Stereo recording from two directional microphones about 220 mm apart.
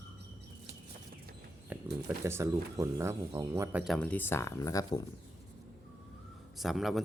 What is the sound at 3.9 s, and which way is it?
Speech, 5° left (ahead or behind).